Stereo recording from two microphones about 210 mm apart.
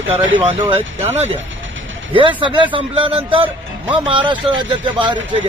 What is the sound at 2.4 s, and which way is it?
Speech, 25° right (ahead or behind).